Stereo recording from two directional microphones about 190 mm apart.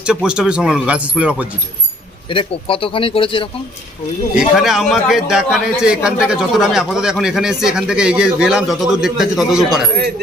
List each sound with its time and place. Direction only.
0.0 s a man's voice: 5° right (ahead or behind)
2.3 s speech: 30° left (ahead or behind)
4.4 s a man's voice: centre (ahead or behind)